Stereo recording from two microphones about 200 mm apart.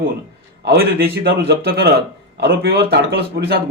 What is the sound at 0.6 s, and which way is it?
A man's voice, 55° right (ahead or behind).